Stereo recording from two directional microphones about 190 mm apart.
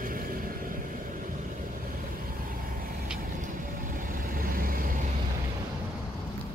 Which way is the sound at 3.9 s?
45° right (ahead or behind).